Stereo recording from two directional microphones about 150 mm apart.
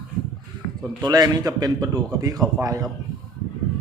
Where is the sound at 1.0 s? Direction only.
25° right (ahead or behind).